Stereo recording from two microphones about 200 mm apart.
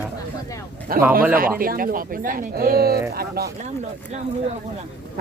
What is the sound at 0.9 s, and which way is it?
Speech, 45° right (ahead or behind).